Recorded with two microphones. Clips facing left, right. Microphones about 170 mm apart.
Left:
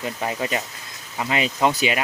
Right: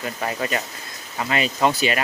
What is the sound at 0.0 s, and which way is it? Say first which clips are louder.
Speech: even; 15° left (ahead or behind).